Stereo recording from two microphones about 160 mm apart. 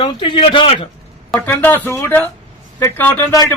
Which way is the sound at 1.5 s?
15° left (ahead or behind).